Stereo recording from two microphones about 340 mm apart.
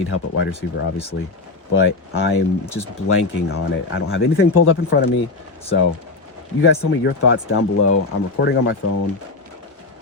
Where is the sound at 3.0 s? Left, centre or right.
Left.